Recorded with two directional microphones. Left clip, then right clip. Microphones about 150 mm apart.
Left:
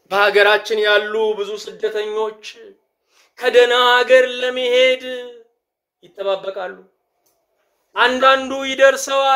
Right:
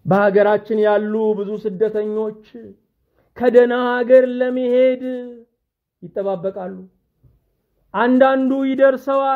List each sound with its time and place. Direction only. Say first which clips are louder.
0.1 s speech: left 1 dB; 35° right (ahead or behind)
7.9 s speech: left 1 dB; 35° right (ahead or behind)